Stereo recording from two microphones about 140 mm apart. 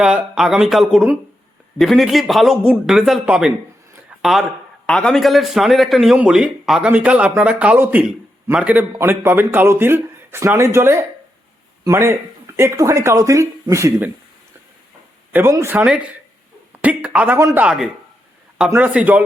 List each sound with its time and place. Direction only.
0.0 s a man's voice: 5° right (ahead or behind); by 14.1 s 20° right (ahead or behind)
15.3 s a man's voice: 15° right (ahead or behind)